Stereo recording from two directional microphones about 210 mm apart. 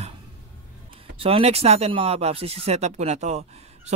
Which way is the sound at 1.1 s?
25° right (ahead or behind).